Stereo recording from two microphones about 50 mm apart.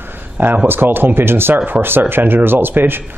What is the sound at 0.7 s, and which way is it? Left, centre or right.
A man's voice, right.